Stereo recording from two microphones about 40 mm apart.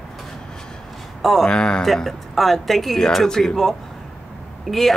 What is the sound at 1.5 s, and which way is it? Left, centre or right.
Speech, left.